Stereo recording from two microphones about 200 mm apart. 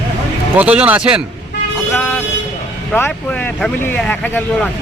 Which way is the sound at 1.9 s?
10° left (ahead or behind).